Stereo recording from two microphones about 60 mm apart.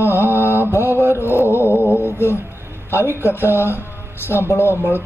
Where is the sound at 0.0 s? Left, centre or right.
Left.